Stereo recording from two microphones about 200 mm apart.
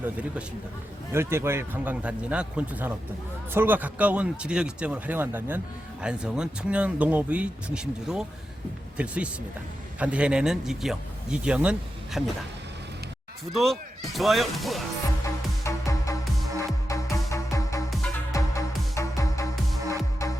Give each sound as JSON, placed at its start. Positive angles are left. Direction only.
{"t": 0.0, "sound": "speech", "side_deg": -5}
{"t": 13.5, "sound": "speech", "side_deg": 0}
{"t": 15.6, "sound": "music", "side_deg": 15}